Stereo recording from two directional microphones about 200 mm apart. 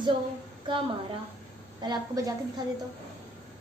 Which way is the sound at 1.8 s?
20° right (ahead or behind).